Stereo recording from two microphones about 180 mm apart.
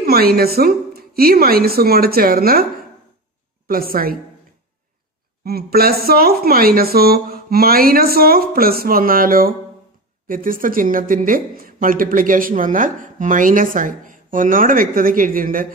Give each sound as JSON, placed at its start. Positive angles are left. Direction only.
{"t": 0.0, "sound": "speech", "side_deg": -60}
{"t": 3.6, "sound": "speech", "side_deg": -55}
{"t": 5.4, "sound": "speech", "side_deg": -60}